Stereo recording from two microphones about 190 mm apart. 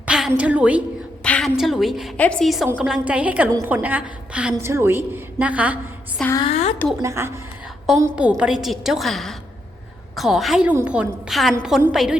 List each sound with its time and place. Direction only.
0.0 s a woman's voice: 5° right (ahead or behind)
1.2 s a woman's voice: 5° left (ahead or behind)
6.3 s a woman's voice: 30° left (ahead or behind)
7.0 s a woman's voice: 15° right (ahead or behind)